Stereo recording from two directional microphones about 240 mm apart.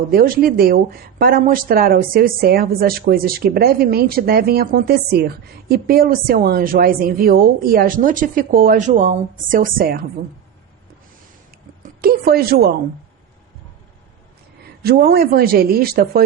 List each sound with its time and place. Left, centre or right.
0.1 s speech: right
11.8 s a woman's voice: right
14.8 s speech: right